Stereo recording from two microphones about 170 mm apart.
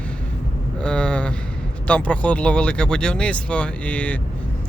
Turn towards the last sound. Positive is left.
turn(degrees=10)  # may be behind; listen again after turning